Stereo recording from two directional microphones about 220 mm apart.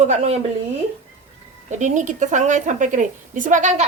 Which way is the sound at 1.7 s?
35° right (ahead or behind).